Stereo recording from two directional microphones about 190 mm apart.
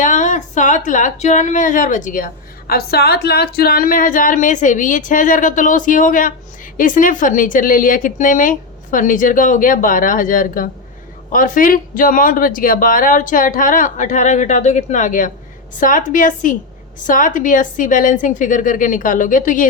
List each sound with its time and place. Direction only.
0.0 s speech: 40° left (ahead or behind)